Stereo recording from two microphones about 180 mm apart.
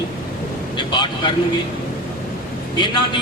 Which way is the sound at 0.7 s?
25° left (ahead or behind).